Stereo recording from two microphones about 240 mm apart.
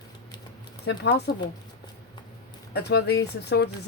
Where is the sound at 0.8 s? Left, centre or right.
Left.